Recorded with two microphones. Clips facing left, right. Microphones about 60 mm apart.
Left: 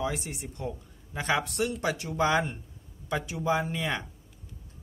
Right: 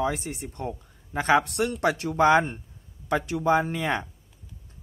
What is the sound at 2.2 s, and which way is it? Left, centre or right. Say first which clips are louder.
Speech: right 7 dB; right.